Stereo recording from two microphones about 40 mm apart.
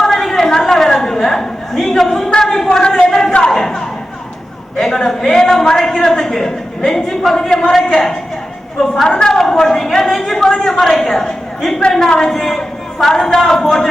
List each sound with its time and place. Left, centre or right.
0.0 s a sound: centre
4.9 s a sound: centre
5.5 s a woman's voice: centre
7.9 s a woman's voice: centre
9.0 s a woman's voice: left
9.3 s a woman's voice: centre